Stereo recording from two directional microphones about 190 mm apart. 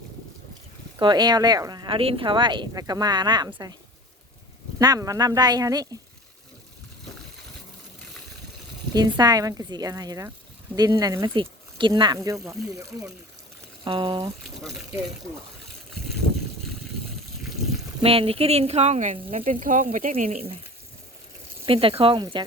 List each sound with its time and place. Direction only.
0.9 s speech: 25° right (ahead or behind)
4.8 s speech: 20° right (ahead or behind)
8.9 s speech: 20° right (ahead or behind)
18.0 s speech: 30° right (ahead or behind)
21.7 s speech: 30° right (ahead or behind)